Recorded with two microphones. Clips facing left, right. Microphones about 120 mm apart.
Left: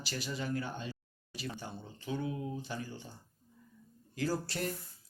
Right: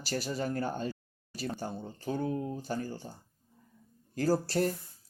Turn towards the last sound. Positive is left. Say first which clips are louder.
# right 7 dB
turn(degrees=-40)  # may be behind; listen again after turning